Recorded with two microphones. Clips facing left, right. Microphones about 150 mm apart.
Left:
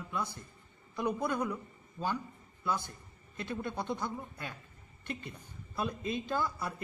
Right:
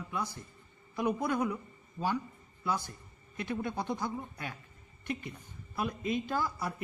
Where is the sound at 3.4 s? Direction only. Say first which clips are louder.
Right 2 dB; 15° right (ahead or behind).